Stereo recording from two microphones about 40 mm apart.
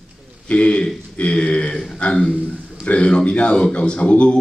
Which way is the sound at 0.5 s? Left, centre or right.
Left.